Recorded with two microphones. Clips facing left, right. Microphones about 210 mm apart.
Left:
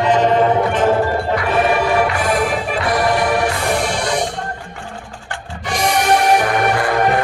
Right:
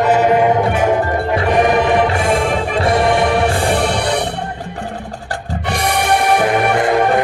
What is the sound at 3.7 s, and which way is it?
Music, 60° right (ahead or behind).